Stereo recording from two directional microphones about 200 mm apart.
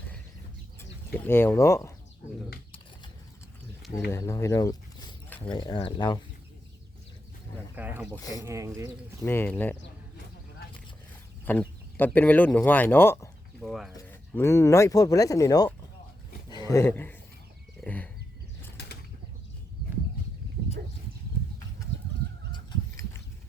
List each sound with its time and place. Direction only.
1.3 s speech: 10° left (ahead or behind)
4.1 s speech: 15° left (ahead or behind)
7.8 s speech: 10° right (ahead or behind)
9.2 s speech: 10° left (ahead or behind)
11.5 s speech: 10° left (ahead or behind)
13.6 s speech: centre (ahead or behind)
13.9 s speech: 15° left (ahead or behind)
22.5 s a sound: 20° left (ahead or behind)